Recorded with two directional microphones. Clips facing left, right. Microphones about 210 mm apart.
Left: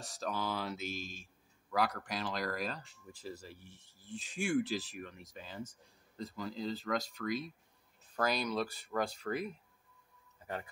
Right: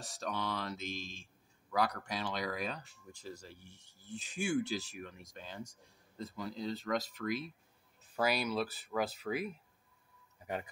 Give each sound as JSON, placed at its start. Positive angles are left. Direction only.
{"t": 0.0, "sound": "speech", "side_deg": 0}
{"t": 10.4, "sound": "a man's voice", "side_deg": -15}